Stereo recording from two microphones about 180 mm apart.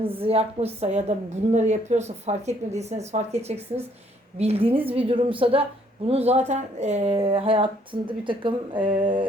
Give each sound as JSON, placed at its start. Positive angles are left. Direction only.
{"t": 0.2, "sound": "a woman's voice", "side_deg": -35}